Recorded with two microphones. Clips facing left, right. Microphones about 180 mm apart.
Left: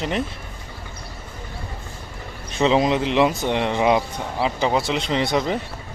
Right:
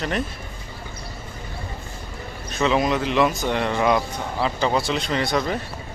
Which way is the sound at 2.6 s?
25° left (ahead or behind).